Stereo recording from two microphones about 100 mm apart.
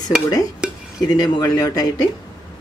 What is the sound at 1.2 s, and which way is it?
Speech, 40° left (ahead or behind).